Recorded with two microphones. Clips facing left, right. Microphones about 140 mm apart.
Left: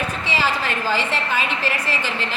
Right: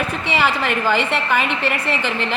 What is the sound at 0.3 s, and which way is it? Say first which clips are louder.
A woman's voice: right 4 dB; 60° right (ahead or behind).